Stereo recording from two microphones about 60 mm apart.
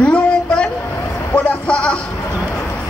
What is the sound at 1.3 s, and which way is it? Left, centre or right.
Speech, left.